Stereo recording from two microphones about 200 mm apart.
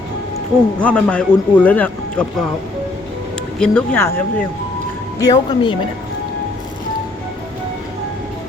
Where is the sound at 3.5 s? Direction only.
5° left (ahead or behind).